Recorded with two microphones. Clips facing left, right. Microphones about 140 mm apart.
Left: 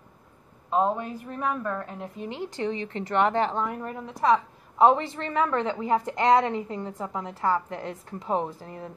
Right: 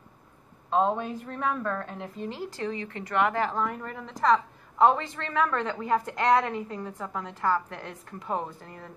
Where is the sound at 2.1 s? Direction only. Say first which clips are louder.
Left 2 dB; 20° left (ahead or behind).